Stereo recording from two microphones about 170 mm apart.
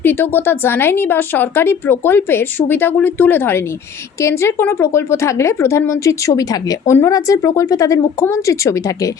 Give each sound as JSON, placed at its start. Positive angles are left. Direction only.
{"t": 0.0, "sound": "a woman's voice", "side_deg": 10}